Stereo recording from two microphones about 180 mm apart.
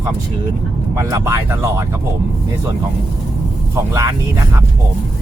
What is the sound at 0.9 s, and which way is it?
Speech, 15° right (ahead or behind).